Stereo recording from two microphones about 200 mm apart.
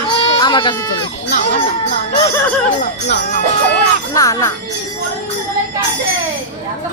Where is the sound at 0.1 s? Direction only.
25° left (ahead or behind).